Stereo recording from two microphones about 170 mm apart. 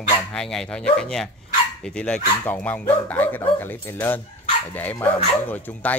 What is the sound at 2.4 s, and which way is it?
Speech, 10° left (ahead or behind).